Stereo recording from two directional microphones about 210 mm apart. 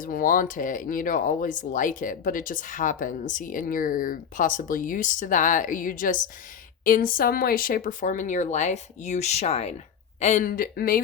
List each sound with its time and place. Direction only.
0.0 s speech: 40° left (ahead or behind)